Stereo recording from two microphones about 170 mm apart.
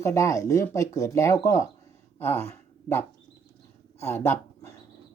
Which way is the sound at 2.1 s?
15° left (ahead or behind).